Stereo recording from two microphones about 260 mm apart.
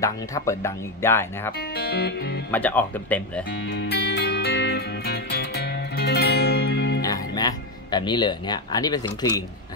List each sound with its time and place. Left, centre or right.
0.0 s speech: centre
1.8 s music: left
2.5 s speech: centre
3.7 s music: left
7.0 s speech: centre